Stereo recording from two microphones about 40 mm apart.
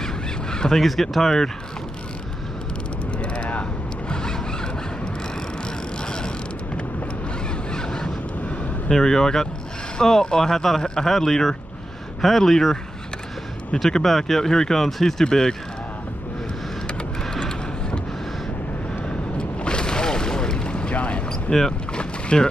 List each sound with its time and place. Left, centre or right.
0.0 s crow: centre
0.7 s speech: centre
3.2 s a sound: left
4.1 s zipper: centre
6.0 s mechanisms: left
7.7 s a sound: centre
8.8 s speech: centre
14.0 s speech: centre
17.3 s a sound: centre
19.0 s a sound: left
21.3 s boat: centre
21.9 s boat: left